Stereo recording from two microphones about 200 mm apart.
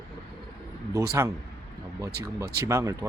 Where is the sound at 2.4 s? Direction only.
15° right (ahead or behind).